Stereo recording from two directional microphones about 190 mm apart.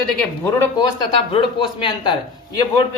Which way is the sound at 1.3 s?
25° left (ahead or behind).